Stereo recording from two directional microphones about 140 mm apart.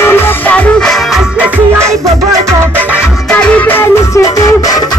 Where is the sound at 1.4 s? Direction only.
20° right (ahead or behind).